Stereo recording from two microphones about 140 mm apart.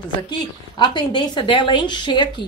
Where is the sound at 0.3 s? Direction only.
35° left (ahead or behind).